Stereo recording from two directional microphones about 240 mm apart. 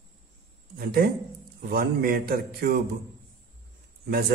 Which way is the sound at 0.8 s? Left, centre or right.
Right.